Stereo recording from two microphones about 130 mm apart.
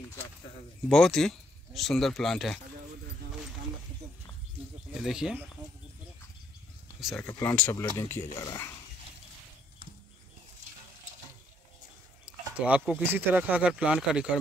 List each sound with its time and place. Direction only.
0.8 s speech: 5° left (ahead or behind)
5.0 s speech: 5° right (ahead or behind)
7.0 s speech: centre (ahead or behind)
7.4 s speech: 15° left (ahead or behind)
12.3 s a sound: 10° right (ahead or behind)
13.0 s speech: 15° right (ahead or behind)